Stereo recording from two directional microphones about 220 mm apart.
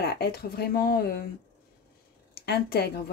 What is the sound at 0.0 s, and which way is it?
A woman's voice, 45° left (ahead or behind).